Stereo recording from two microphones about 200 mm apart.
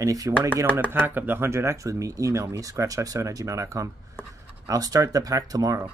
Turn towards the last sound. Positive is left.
turn(degrees=-20)  # may be behind; listen again after turning